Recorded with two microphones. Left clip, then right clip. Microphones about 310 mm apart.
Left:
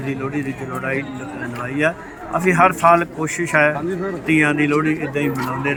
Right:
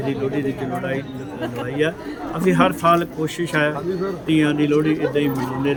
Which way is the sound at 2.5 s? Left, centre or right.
Centre.